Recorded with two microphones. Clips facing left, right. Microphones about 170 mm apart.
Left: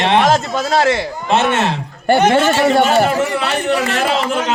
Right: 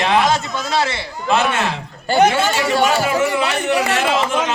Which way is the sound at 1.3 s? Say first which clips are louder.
Left 2 dB; 25° left (ahead or behind).